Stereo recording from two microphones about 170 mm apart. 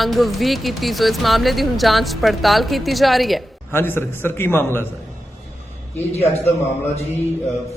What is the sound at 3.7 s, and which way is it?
A man's voice, 15° left (ahead or behind).